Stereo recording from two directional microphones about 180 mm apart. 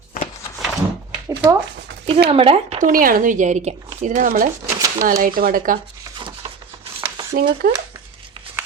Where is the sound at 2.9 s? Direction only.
50° right (ahead or behind).